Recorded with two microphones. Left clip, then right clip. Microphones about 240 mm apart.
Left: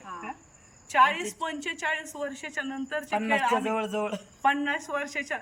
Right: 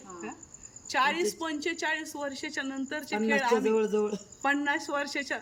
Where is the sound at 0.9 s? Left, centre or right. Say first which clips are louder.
Left 5 dB; centre.